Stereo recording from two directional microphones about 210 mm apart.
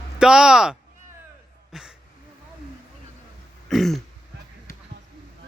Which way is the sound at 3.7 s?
Centre (ahead or behind).